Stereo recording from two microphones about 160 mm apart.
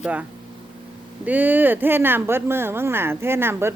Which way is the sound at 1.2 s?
10° right (ahead or behind).